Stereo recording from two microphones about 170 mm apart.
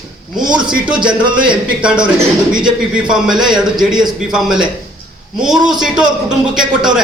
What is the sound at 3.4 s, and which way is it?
A man's voice, 5° right (ahead or behind).